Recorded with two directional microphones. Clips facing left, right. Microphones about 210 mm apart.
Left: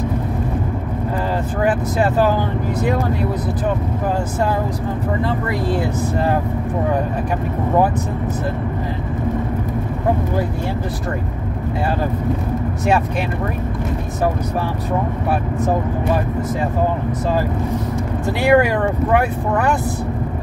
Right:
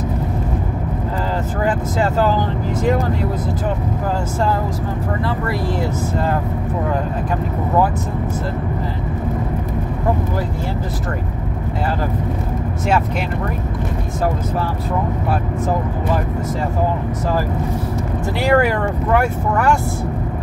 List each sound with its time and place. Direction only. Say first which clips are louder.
1.6 s speech: left 2 dB; 15° left (ahead or behind)
18.4 s speech: left 2 dB; 15° left (ahead or behind)